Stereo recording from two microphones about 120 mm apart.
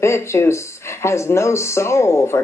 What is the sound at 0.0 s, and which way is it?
Speech, 25° left (ahead or behind).